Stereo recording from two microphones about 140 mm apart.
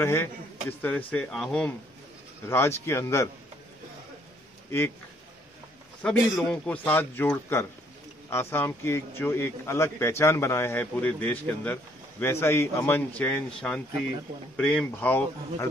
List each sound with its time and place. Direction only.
0.0 s speech: 15° left (ahead or behind)
2.4 s speech: 15° left (ahead or behind)
4.6 s speech: 15° left (ahead or behind)
6.0 s speech: 10° left (ahead or behind)